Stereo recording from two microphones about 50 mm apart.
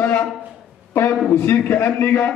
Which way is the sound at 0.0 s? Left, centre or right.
Left.